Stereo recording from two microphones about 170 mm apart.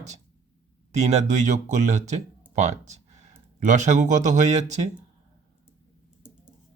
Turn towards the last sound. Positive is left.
turn(degrees=-45)  # may be behind; listen again after turning